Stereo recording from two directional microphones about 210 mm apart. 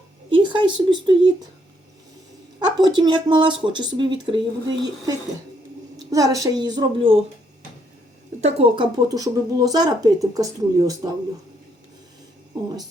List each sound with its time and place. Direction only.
0.3 s speech: 25° right (ahead or behind)
2.6 s speech: 20° right (ahead or behind)
8.4 s speech: 30° right (ahead or behind)